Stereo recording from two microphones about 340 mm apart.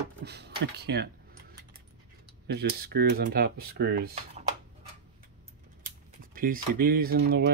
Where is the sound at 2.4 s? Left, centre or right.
Right.